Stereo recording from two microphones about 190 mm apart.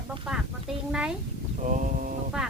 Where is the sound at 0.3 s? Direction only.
5° right (ahead or behind).